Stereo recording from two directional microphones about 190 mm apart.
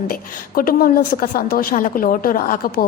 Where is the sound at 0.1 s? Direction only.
50° left (ahead or behind).